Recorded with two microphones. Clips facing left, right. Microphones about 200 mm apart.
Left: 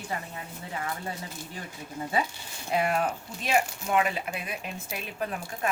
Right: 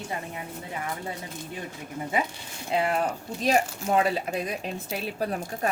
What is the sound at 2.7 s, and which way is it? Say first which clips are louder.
Speech: right 1 dB; 25° right (ahead or behind).